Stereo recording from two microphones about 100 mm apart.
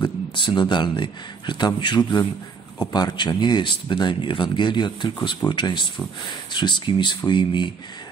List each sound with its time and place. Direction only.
0.0 s speech: 55° left (ahead or behind)